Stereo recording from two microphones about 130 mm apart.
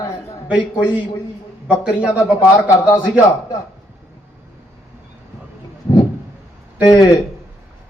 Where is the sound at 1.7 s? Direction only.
10° right (ahead or behind).